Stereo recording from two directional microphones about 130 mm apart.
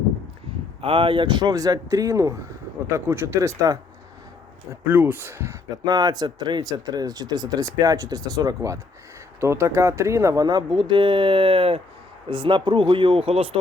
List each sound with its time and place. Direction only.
0.8 s speech: 45° right (ahead or behind); by 3.8 s 25° right (ahead or behind)
4.9 s speech: 15° right (ahead or behind); by 13.6 s 50° right (ahead or behind)